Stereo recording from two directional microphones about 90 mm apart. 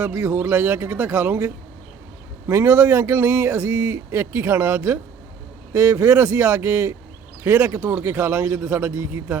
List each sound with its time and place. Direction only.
0.0 s speech: 25° right (ahead or behind)